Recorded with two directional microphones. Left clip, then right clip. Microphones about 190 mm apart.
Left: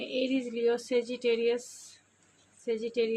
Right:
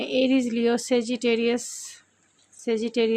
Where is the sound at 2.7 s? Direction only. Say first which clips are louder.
Right 6 dB; 50° right (ahead or behind).